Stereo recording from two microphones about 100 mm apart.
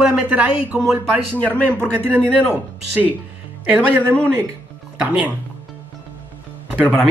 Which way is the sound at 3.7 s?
15° right (ahead or behind).